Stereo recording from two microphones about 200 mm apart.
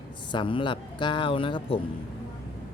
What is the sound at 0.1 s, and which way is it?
Speech, 20° left (ahead or behind).